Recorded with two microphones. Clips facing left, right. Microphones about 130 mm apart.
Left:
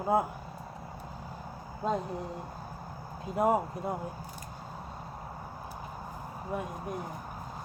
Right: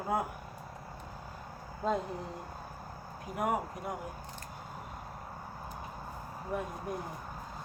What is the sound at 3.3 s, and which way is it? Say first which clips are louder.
Speech: left 6 dB; 25° left (ahead or behind).